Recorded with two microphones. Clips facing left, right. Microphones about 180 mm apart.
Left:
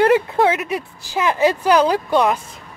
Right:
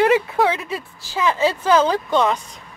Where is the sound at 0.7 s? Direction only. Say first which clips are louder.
Left 4 dB; 15° left (ahead or behind).